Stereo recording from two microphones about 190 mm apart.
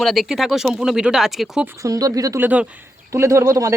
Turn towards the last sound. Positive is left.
turn(degrees=-15)  # may be behind; listen again after turning